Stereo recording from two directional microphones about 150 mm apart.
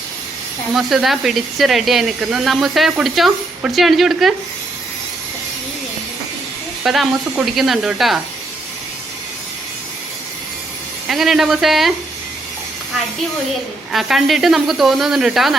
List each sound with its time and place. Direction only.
0.7 s speech: centre (ahead or behind)
6.8 s speech: centre (ahead or behind)
11.1 s speech: centre (ahead or behind)
13.9 s speech: centre (ahead or behind)